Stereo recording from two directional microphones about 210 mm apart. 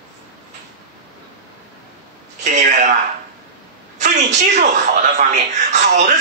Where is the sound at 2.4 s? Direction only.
35° right (ahead or behind).